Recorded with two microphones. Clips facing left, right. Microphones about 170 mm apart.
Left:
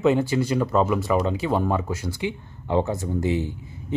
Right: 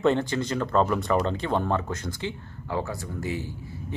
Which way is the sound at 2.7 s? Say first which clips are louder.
Left 7 dB; 20° left (ahead or behind).